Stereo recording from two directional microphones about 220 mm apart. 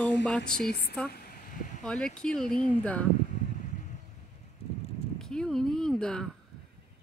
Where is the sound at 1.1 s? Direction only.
40° left (ahead or behind).